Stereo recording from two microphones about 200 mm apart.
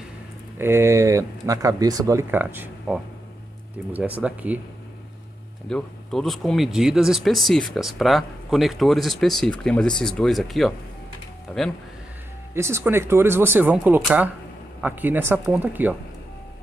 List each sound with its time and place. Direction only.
0.6 s speech: 15° right (ahead or behind)
5.7 s speech: 5° left (ahead or behind)
12.5 s speech: 10° right (ahead or behind)